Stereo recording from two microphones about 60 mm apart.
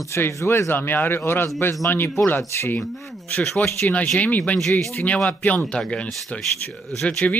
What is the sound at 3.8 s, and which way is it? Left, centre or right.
Speech, left.